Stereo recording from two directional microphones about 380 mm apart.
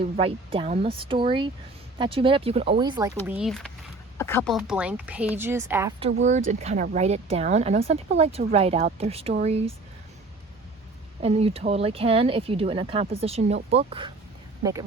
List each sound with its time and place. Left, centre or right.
0.2 s speech: centre
11.2 s speech: centre